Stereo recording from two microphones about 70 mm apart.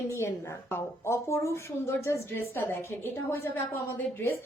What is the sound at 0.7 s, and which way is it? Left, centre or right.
Speech, left.